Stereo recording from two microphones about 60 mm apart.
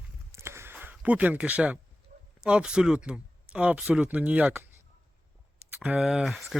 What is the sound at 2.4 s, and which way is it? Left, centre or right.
Speech, centre.